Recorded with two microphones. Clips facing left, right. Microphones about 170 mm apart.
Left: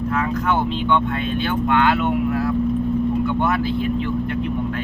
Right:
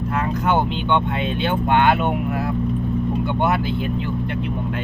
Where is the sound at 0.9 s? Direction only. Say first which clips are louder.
Left 1 dB; 20° right (ahead or behind).